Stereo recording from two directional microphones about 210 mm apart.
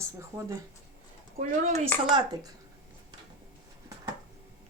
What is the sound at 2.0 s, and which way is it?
Speech, 20° right (ahead or behind).